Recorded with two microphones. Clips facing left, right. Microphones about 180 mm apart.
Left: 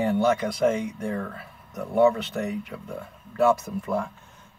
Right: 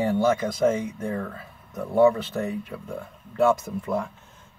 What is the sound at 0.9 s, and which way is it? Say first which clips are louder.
Speech: even; 25° right (ahead or behind).